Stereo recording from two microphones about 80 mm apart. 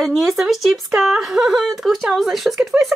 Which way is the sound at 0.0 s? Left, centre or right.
Centre.